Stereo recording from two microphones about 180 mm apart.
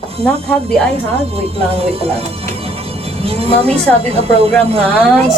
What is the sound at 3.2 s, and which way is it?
A woman's voice, 35° right (ahead or behind).